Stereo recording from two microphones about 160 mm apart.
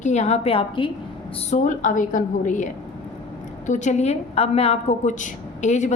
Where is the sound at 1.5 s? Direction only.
50° left (ahead or behind).